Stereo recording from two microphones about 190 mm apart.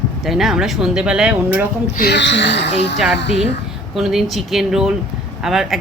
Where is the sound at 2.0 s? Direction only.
65° left (ahead or behind).